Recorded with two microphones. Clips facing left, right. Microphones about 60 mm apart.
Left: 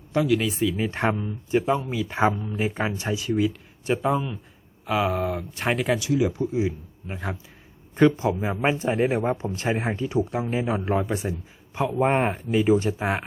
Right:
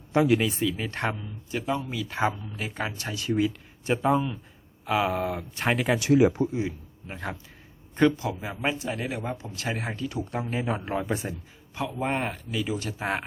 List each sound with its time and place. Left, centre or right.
0.1 s speech: right
0.3 s speech: centre
0.9 s speech: centre
2.3 s speech: left
3.2 s speech: centre
6.0 s speech: right
6.5 s speech: centre
8.1 s speech: left
10.2 s speech: centre
11.9 s speech: left
13.0 s speech: centre